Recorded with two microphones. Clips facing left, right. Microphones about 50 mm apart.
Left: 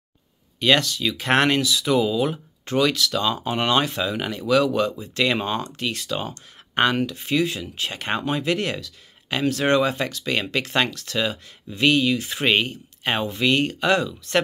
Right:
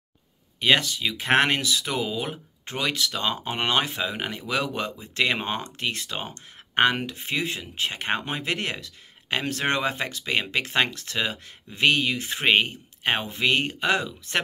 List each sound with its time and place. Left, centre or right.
0.6 s speech: right